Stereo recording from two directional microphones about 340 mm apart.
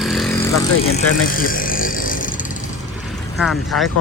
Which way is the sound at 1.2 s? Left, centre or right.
Left.